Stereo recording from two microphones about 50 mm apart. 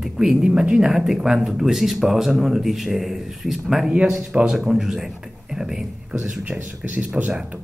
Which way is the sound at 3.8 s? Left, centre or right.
Centre.